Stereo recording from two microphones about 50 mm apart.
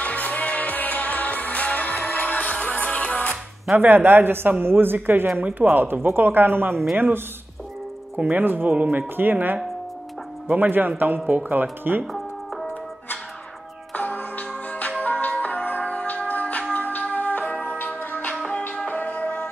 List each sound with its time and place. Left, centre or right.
0.0 s music: left
3.7 s a man's voice: right
8.3 s a man's voice: right
13.9 s music: left